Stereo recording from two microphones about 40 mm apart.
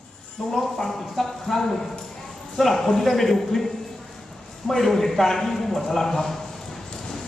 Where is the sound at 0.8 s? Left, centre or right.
Centre.